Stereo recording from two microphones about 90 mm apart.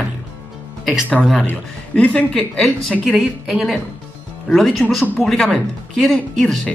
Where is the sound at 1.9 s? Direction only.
10° left (ahead or behind).